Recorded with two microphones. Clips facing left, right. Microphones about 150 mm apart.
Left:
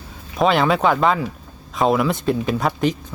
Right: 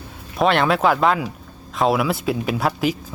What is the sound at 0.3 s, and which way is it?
Speech, centre (ahead or behind).